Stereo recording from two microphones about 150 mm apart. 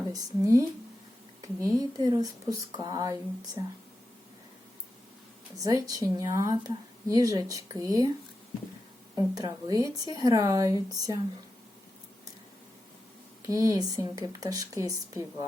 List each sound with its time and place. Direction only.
0.1 s speech: 20° right (ahead or behind)
5.6 s speech: 25° right (ahead or behind)
9.1 s speech: 25° right (ahead or behind)
13.5 s speech: 25° right (ahead or behind)